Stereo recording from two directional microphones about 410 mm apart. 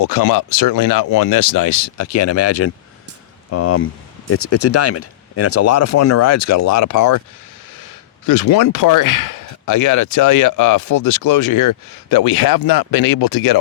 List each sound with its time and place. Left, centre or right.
0.0 s speech: left
8.3 s speech: left